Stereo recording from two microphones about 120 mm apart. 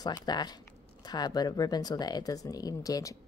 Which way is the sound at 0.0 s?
35° left (ahead or behind).